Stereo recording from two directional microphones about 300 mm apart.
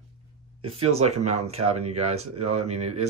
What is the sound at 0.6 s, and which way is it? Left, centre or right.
Speech, centre.